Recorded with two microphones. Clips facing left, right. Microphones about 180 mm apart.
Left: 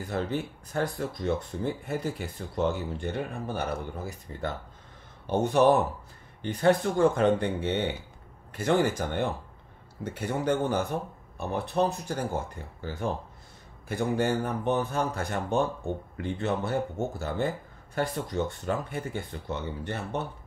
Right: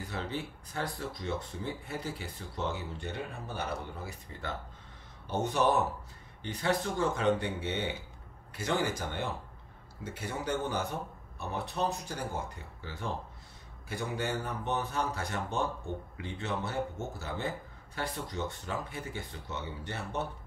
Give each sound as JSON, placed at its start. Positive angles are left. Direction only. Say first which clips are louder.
{"t": 0.1, "sound": "speech", "louder": "left 8 dB", "side_deg": 50}
{"t": 5.2, "sound": "speech", "louder": "left 7 dB", "side_deg": 60}
{"t": 13.8, "sound": "speech", "louder": "left 8 dB", "side_deg": 55}